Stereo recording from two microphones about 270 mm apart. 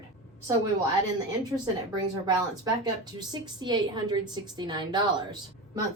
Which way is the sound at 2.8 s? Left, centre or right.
Centre.